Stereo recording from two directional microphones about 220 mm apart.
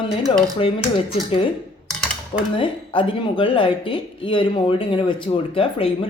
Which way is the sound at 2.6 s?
25° left (ahead or behind).